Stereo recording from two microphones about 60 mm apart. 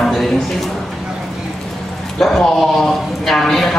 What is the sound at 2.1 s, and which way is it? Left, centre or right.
Speech, centre.